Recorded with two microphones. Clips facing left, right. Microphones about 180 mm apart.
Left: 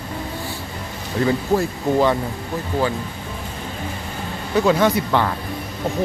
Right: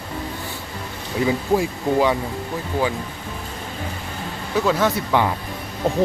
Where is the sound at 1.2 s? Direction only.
10° right (ahead or behind).